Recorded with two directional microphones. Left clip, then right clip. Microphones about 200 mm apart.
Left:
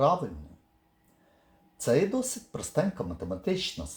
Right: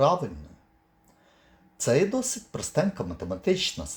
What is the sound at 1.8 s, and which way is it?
Speech, 20° right (ahead or behind).